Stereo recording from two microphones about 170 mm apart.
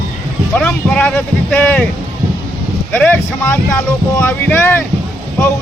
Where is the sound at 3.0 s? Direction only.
10° left (ahead or behind).